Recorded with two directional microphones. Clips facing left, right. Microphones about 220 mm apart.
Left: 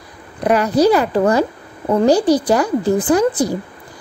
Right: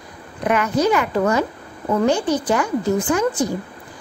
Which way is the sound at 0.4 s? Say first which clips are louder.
Left 5 dB; 35° left (ahead or behind).